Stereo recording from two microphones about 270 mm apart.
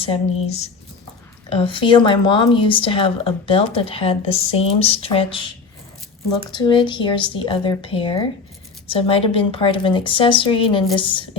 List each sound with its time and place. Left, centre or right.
0.0 s speech: left
6.5 s speech: centre